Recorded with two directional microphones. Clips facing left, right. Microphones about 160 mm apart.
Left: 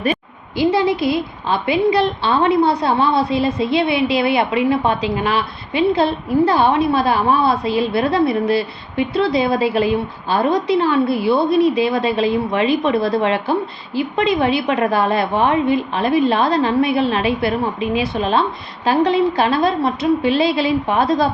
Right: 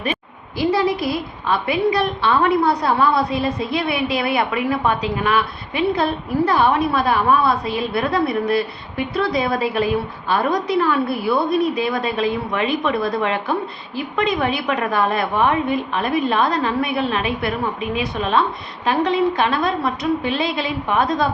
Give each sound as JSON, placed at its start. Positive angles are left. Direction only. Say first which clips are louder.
{"t": 0.0, "sound": "a woman's voice", "louder": "left 5 dB", "side_deg": 30}